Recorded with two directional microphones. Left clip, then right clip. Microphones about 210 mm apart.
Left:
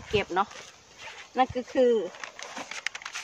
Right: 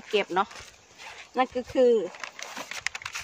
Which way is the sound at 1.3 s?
35° right (ahead or behind).